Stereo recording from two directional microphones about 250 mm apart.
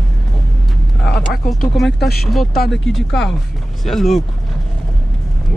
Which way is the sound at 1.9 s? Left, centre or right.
Left.